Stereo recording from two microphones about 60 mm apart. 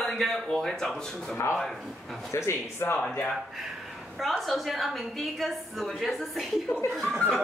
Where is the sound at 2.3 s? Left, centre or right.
Left.